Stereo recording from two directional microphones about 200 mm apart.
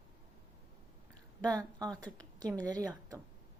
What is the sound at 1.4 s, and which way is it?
Speech, 20° right (ahead or behind).